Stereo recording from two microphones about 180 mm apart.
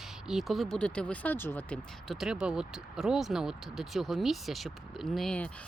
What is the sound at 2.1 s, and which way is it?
Speech, 5° right (ahead or behind).